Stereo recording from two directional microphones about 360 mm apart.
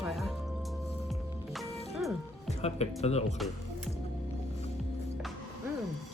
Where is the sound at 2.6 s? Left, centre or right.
Centre.